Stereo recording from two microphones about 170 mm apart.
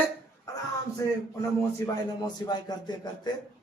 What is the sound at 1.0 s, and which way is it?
Speech, 20° left (ahead or behind).